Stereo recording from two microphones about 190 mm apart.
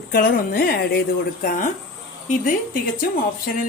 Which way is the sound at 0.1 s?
50° left (ahead or behind).